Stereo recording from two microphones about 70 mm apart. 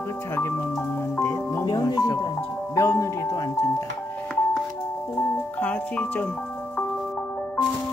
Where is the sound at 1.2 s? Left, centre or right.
Left.